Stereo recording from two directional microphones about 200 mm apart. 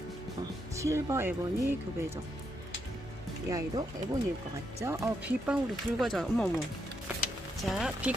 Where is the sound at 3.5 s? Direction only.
15° right (ahead or behind); by 6.5 s centre (ahead or behind).